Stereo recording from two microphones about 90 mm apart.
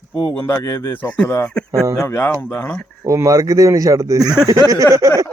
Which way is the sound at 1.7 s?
35° right (ahead or behind).